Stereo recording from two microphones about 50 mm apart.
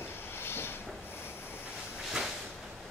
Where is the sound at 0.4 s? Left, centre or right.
Left.